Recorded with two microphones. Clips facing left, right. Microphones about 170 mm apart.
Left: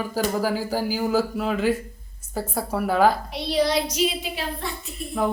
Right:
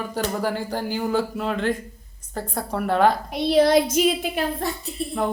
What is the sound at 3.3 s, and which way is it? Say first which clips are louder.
A woman's voice: right 5 dB; 50° right (ahead or behind).